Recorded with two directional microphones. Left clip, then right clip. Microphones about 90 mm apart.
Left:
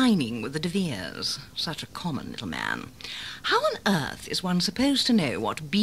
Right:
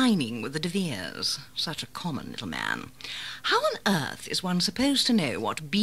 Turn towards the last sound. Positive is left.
turn(degrees=-40)  # may be behind; listen again after turning